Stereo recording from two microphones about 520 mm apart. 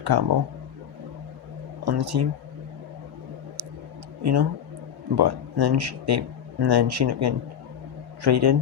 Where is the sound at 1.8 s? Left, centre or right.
Right.